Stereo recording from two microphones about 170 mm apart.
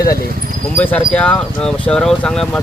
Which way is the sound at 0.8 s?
10° left (ahead or behind).